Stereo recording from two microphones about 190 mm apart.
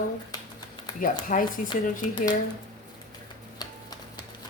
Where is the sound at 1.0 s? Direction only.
45° left (ahead or behind).